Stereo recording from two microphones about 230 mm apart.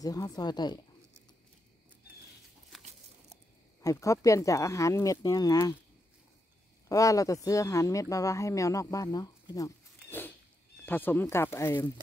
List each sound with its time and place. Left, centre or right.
0.0 s speech: centre
3.8 s speech: centre
6.9 s speech: centre